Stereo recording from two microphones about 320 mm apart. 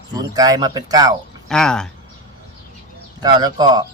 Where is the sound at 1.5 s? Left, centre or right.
Centre.